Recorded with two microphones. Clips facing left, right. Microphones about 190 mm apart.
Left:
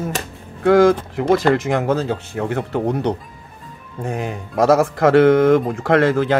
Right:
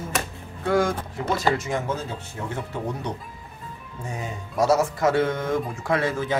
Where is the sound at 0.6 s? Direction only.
80° left.